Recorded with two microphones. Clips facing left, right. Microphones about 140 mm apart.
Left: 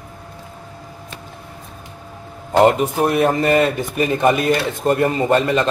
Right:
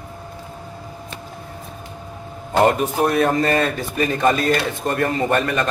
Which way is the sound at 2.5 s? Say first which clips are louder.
Left 3 dB; 20° left (ahead or behind).